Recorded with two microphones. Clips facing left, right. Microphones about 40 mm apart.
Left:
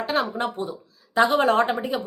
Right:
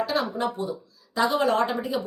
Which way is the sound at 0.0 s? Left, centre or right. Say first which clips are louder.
Left 1 dB; left.